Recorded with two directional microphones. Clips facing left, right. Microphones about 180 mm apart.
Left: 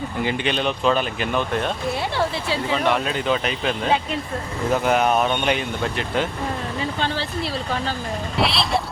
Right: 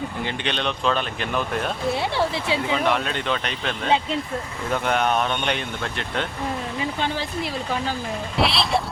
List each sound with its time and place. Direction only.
0.2 s speech: 5° left (ahead or behind)
1.9 s speech: 25° right (ahead or behind)
2.7 s speech: centre (ahead or behind)
6.7 s speech: 15° right (ahead or behind)
8.4 s speech: centre (ahead or behind)